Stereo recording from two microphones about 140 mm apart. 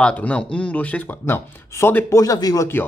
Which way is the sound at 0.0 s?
10° left (ahead or behind).